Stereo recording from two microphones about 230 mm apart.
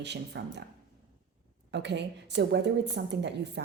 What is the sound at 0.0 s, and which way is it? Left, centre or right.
Speech, right.